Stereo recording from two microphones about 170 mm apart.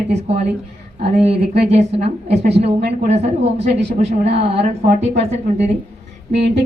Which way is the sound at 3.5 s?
85° right.